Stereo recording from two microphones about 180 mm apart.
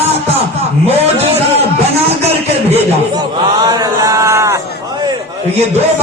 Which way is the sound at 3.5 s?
20° right (ahead or behind).